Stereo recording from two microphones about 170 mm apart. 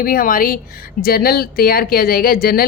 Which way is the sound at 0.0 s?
55° left (ahead or behind).